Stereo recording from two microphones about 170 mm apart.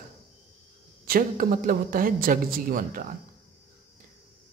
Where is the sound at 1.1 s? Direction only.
55° right (ahead or behind).